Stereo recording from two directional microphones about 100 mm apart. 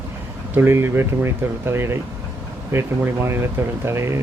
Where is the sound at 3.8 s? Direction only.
25° right (ahead or behind).